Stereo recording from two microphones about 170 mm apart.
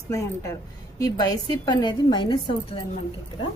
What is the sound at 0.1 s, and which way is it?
A woman's voice, 15° left (ahead or behind).